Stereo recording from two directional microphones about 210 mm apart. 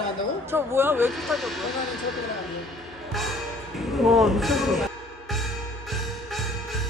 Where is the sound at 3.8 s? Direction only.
Centre (ahead or behind).